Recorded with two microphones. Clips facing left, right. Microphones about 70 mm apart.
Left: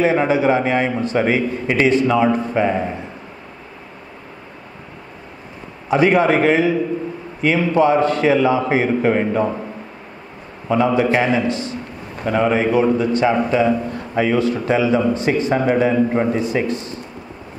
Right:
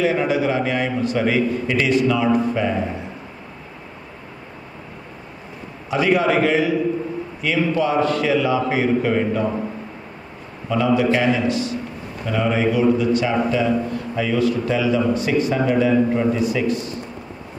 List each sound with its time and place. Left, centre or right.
0.0 s a man's voice: left
5.9 s a man's voice: left
10.7 s a man's voice: left